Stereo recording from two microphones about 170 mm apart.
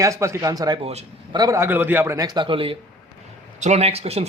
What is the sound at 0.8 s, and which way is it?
Speech, 40° right (ahead or behind).